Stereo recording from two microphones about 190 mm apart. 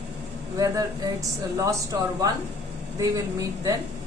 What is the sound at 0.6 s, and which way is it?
A woman's voice, 20° right (ahead or behind).